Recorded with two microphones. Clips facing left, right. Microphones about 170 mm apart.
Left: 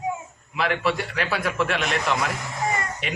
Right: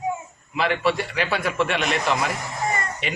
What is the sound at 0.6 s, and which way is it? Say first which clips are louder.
A man's voice: right 2 dB; centre (ahead or behind).